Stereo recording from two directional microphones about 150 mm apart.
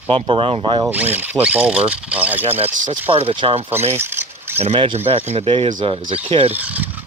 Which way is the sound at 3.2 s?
40° right (ahead or behind).